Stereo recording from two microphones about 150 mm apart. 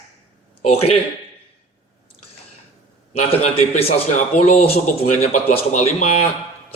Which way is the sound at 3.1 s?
45° left (ahead or behind).